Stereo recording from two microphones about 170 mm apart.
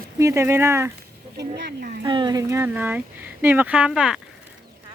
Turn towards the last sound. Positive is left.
turn(degrees=-5)  # may be behind; listen again after turning